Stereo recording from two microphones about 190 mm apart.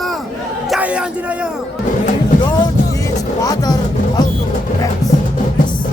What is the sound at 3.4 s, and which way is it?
Music, 20° left (ahead or behind).